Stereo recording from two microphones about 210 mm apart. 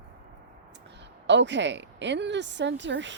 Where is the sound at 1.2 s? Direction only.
55° right (ahead or behind).